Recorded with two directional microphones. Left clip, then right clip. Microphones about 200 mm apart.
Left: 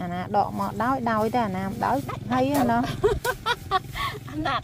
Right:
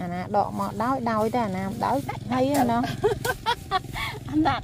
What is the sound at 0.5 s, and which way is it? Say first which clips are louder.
Speech: left 1 dB; 5° right (ahead or behind).